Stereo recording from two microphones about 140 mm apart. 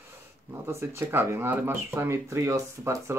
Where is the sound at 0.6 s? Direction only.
20° right (ahead or behind).